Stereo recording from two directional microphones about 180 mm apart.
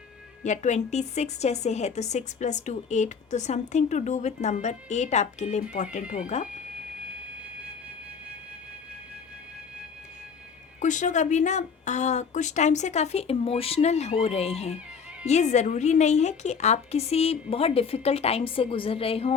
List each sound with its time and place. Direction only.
0.4 s a woman's voice: 40° left (ahead or behind)
10.8 s a woman's voice: 45° left (ahead or behind)